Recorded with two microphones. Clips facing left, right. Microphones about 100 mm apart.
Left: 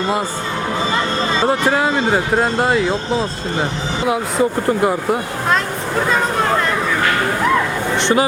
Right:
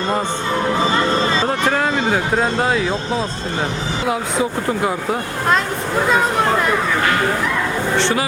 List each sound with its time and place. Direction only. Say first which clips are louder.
1.5 s speech: left 2 dB; 5° left (ahead or behind)
7.9 s speech: left 3 dB; 20° left (ahead or behind)